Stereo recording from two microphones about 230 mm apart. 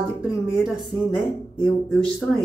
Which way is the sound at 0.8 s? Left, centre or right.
Centre.